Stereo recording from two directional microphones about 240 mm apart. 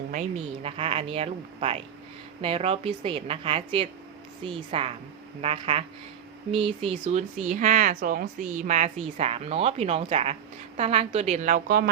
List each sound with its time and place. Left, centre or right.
0.1 s speech: right